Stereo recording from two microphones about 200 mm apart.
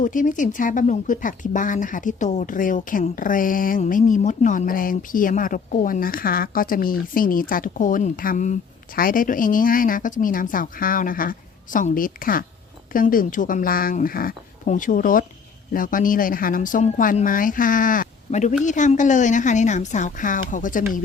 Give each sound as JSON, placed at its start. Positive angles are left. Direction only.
{"t": 0.0, "sound": "speech", "side_deg": 40}